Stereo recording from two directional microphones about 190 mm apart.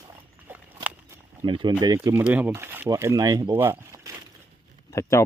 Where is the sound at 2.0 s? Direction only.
10° right (ahead or behind).